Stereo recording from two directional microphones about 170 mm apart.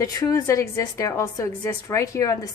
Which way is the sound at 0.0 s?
20° left (ahead or behind).